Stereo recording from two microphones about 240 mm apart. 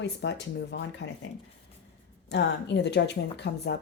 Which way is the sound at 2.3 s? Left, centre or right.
Left.